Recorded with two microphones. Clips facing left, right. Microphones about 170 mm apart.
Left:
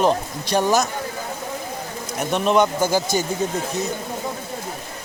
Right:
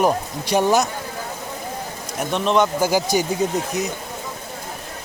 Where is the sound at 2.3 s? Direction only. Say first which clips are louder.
Left 1 dB; 5° left (ahead or behind).